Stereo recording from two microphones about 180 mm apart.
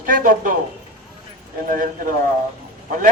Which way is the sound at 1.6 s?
50° right (ahead or behind).